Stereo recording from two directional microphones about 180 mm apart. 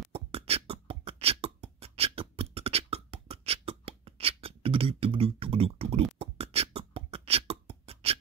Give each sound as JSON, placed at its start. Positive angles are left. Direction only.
{"t": 0.1, "sound": "beatboxing", "side_deg": -35}